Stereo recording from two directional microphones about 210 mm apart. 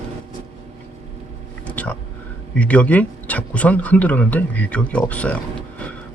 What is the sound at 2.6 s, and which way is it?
Speech, 5° left (ahead or behind).